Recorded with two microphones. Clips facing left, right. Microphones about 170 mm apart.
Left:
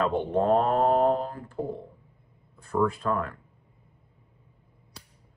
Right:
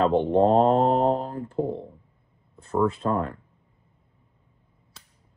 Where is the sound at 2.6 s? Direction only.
25° right (ahead or behind).